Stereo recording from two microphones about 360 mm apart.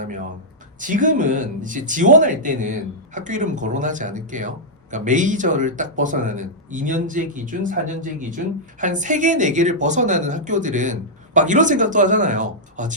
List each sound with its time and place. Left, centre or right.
0.0 s speech: right